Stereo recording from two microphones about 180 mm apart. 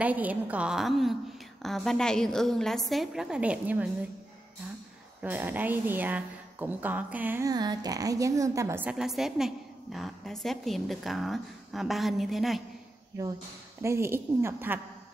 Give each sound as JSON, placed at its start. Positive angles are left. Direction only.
{"t": 0.0, "sound": "a woman's voice", "side_deg": -10}
{"t": 5.2, "sound": "a woman's voice", "side_deg": -10}
{"t": 13.8, "sound": "a woman's voice", "side_deg": -15}